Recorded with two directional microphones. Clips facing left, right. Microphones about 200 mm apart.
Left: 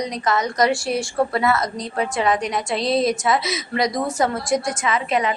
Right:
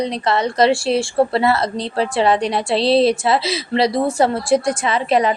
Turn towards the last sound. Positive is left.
turn(degrees=-35)  # may be behind; listen again after turning